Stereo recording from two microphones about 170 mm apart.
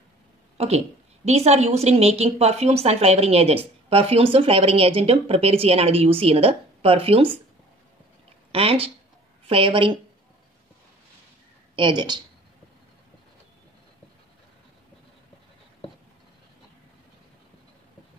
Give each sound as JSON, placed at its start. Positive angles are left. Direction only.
{"t": 0.6, "sound": "a woman's voice", "side_deg": -40}
{"t": 8.5, "sound": "a woman's voice", "side_deg": -35}
{"t": 11.7, "sound": "speech", "side_deg": -30}